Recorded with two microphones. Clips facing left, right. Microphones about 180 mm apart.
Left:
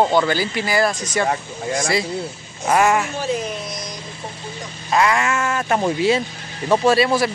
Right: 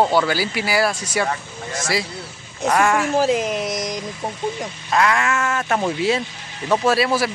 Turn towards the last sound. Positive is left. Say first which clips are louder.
# left 2 dB
turn(degrees=-5)  # may be behind; listen again after turning